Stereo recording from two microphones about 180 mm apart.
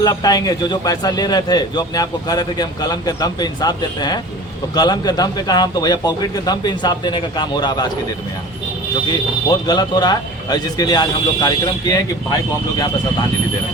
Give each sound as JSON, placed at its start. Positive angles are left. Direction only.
{"t": 0.0, "sound": "a man's voice", "side_deg": 20}
{"t": 9.5, "sound": "a man's voice", "side_deg": 25}